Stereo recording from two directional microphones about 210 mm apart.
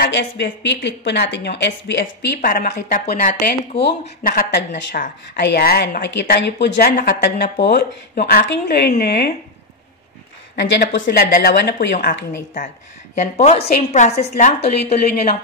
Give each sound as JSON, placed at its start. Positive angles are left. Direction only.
{"t": 0.0, "sound": "a woman's voice", "side_deg": 55}
{"t": 10.5, "sound": "a woman's voice", "side_deg": 55}